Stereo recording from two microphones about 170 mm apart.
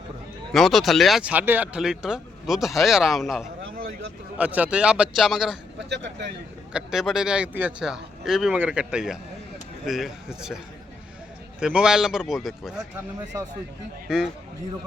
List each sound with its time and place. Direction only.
0.5 s speech: centre (ahead or behind)
5.9 s speech: 90° right
6.7 s speech: centre (ahead or behind)
11.6 s speech: 5° right (ahead or behind)
13.3 s speech: 20° right (ahead or behind)
14.1 s speech: 5° right (ahead or behind)